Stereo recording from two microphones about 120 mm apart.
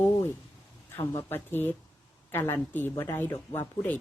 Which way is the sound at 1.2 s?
20° left (ahead or behind).